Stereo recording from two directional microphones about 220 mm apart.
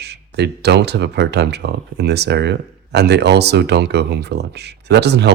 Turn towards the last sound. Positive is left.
turn(degrees=-50)  # may be behind; listen again after turning